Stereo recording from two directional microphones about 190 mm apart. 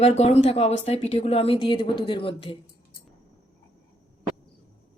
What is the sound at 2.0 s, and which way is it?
Music, 25° left (ahead or behind).